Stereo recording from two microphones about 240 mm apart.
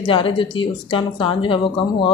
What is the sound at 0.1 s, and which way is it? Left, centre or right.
A woman's voice, left.